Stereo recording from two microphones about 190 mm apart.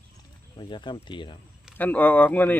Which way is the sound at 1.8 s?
10° left (ahead or behind).